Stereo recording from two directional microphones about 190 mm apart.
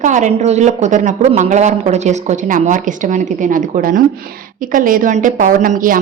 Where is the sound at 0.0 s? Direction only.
40° right (ahead or behind).